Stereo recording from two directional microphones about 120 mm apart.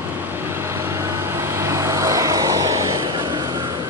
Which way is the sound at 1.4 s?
25° right (ahead or behind).